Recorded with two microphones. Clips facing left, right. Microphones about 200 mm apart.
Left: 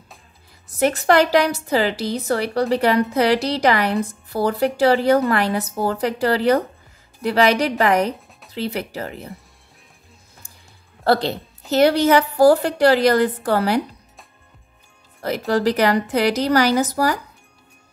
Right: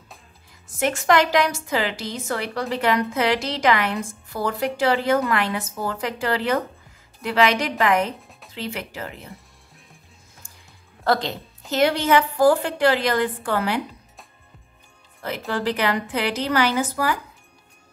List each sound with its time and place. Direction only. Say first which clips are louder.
0.7 s a woman's voice: left 3 dB; 35° left (ahead or behind)
11.1 s a woman's voice: left 4 dB; 35° left (ahead or behind)
15.2 s a woman's voice: left 6 dB; 40° left (ahead or behind)